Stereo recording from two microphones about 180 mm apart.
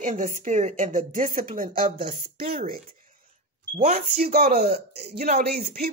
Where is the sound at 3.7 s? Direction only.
40° right (ahead or behind).